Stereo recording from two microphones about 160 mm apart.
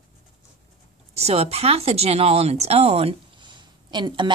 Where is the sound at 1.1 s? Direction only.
40° right (ahead or behind).